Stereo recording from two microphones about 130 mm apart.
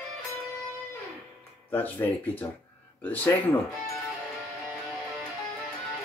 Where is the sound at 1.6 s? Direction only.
15° left (ahead or behind).